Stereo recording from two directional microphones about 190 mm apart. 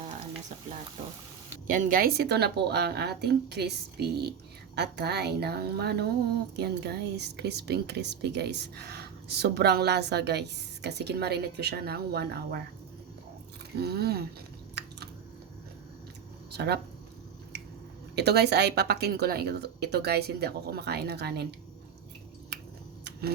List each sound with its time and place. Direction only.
1.6 s speech: 45° right (ahead or behind)
13.7 s speech: 55° right (ahead or behind)
14.8 s a sound: 60° right (ahead or behind)
16.5 s speech: 60° right (ahead or behind)
18.1 s speech: 60° right (ahead or behind)